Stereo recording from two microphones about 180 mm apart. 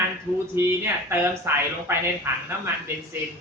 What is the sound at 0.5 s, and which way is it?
A woman's voice, 15° right (ahead or behind).